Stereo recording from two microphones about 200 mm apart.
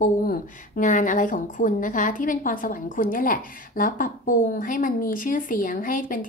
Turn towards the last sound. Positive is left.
turn(degrees=45)  # may be behind; listen again after turning